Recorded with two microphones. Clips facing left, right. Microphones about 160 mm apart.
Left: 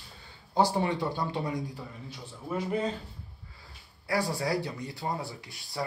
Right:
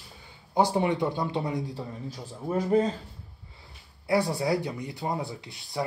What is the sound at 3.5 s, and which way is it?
Speech, 25° right (ahead or behind).